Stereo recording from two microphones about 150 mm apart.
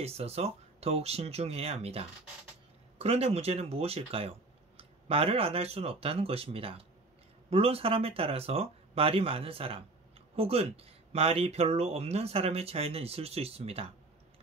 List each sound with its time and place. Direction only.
0.0 s speech: 45° right (ahead or behind)